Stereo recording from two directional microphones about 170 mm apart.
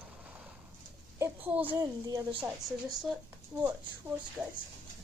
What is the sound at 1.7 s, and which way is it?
Speech, 20° right (ahead or behind).